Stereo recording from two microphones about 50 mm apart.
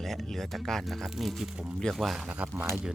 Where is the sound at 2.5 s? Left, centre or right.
Right.